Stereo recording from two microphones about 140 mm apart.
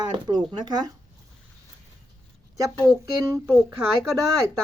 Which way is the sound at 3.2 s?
15° right (ahead or behind).